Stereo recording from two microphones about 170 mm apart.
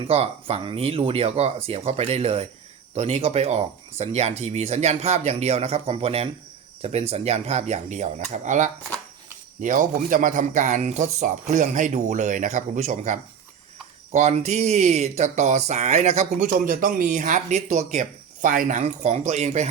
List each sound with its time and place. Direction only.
0.1 s speech: 35° right (ahead or behind)